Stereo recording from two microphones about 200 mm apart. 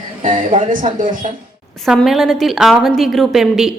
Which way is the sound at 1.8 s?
Centre (ahead or behind).